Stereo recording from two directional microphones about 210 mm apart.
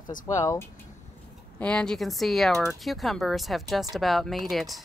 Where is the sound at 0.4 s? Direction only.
15° left (ahead or behind).